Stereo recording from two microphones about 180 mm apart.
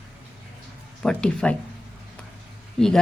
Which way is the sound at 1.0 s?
5° left (ahead or behind).